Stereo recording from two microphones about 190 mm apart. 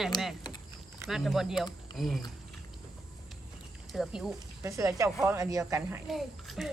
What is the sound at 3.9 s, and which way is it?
Speech, centre (ahead or behind).